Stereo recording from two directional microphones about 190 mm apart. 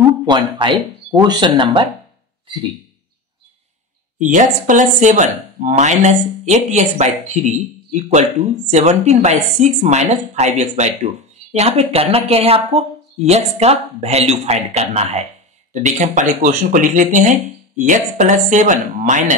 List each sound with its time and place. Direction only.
0.3 s speech: 25° right (ahead or behind)
4.2 s speech: 40° right (ahead or behind)